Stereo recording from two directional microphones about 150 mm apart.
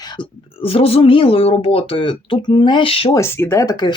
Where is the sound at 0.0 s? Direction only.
30° left (ahead or behind).